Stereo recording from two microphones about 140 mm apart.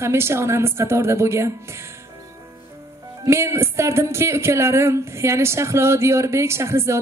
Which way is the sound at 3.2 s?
20° right (ahead or behind).